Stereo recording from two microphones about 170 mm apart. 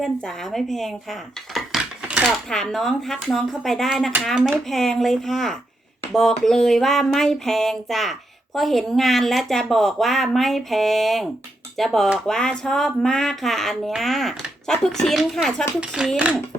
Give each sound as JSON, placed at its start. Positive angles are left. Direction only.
{"t": 0.0, "sound": "speech", "side_deg": 0}